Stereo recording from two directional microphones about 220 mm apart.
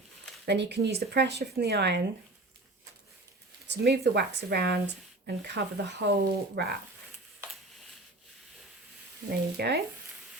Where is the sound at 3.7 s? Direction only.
50° right (ahead or behind).